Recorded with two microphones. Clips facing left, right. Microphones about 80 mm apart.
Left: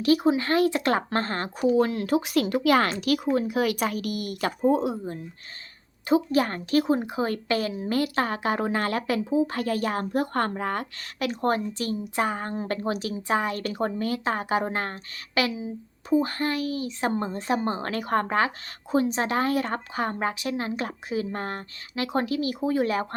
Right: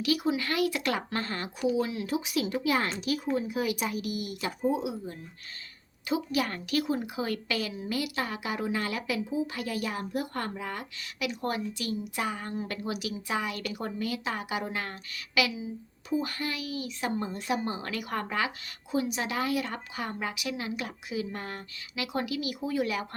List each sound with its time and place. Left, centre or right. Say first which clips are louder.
0.0 s speech: left 7 dB; left